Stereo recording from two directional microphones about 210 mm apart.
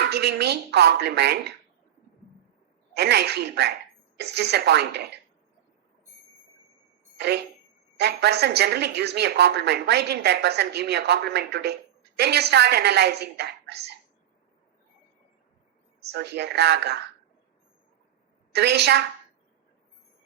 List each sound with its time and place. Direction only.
0.1 s a woman's voice: 50° right (ahead or behind)
2.9 s a woman's voice: 50° right (ahead or behind)
7.2 s a woman's voice: 50° right (ahead or behind)
16.0 s a woman's voice: 50° right (ahead or behind)
18.5 s a woman's voice: 50° right (ahead or behind)